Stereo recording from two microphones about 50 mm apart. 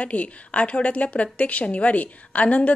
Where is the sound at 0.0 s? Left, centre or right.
Left.